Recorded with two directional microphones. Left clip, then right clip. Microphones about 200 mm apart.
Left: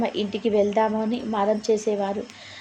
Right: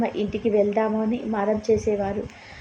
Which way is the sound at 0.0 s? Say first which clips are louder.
Even; 20° left (ahead or behind).